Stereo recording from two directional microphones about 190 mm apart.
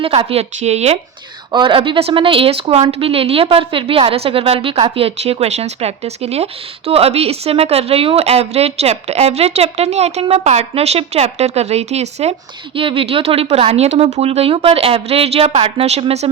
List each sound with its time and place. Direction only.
0.0 s a woman's voice: 30° right (ahead or behind)